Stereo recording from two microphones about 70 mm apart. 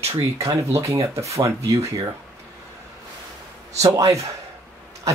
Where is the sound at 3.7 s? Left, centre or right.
Right.